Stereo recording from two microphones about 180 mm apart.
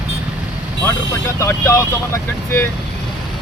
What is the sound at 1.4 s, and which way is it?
Speech, 15° left (ahead or behind).